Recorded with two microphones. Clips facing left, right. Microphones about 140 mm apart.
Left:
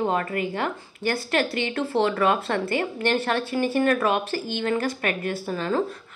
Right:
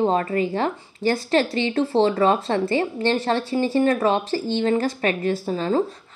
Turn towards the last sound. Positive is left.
turn(degrees=-25)  # may be behind; listen again after turning